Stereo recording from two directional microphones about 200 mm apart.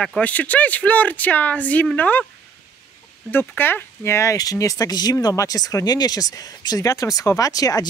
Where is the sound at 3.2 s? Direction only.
10° left (ahead or behind).